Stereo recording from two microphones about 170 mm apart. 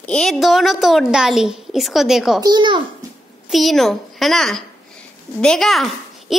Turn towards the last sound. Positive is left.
turn(degrees=0)  # may be behind; listen again after turning